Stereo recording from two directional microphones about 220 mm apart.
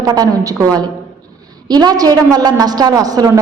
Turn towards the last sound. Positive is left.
turn(degrees=-15)  # may be behind; listen again after turning